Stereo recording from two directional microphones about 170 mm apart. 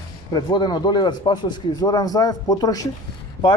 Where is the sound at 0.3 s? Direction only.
25° left (ahead or behind).